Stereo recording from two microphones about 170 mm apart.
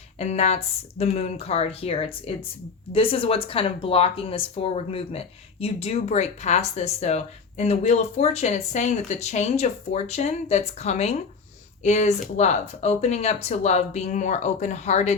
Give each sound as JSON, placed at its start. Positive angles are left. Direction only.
{"t": 0.2, "sound": "speech", "side_deg": 40}